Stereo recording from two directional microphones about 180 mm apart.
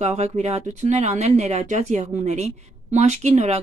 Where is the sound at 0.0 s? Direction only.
35° right (ahead or behind).